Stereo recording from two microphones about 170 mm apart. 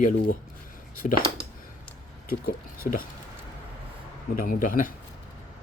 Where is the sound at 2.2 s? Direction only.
55° left (ahead or behind).